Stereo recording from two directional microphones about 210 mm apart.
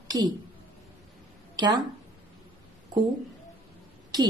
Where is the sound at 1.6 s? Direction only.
20° right (ahead or behind).